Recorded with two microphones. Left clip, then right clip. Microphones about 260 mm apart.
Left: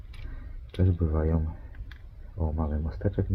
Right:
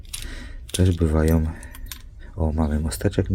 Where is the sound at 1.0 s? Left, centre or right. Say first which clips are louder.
Right 9 dB; right.